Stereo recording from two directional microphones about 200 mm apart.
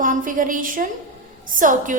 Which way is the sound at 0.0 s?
40° right (ahead or behind).